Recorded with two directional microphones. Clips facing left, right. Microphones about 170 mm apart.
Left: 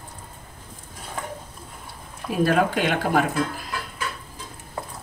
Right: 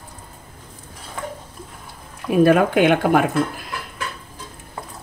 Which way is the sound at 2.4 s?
55° right (ahead or behind).